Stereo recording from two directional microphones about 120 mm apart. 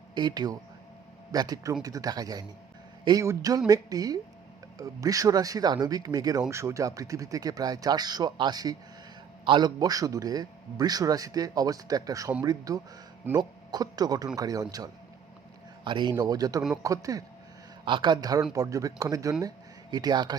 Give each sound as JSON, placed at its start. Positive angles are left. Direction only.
{"t": 0.1, "sound": "a man's voice", "side_deg": -35}
{"t": 15.8, "sound": "a man's voice", "side_deg": -40}
{"t": 17.8, "sound": "a man's voice", "side_deg": -40}